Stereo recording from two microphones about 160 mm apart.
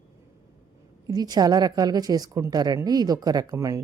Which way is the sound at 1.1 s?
25° right (ahead or behind).